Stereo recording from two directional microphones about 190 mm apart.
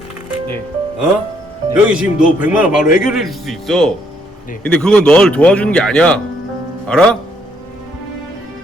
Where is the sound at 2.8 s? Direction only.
45° left (ahead or behind).